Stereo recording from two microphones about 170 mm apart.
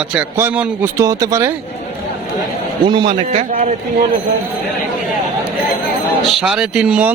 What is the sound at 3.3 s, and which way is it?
Speech, 50° right (ahead or behind).